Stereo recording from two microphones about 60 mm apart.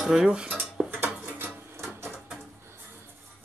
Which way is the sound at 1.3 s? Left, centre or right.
Right.